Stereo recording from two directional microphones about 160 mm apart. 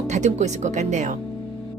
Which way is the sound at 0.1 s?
45° right (ahead or behind).